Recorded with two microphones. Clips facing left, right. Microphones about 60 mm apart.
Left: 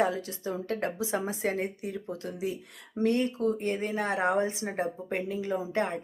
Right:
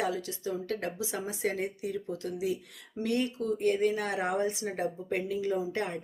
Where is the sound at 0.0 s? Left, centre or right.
Left.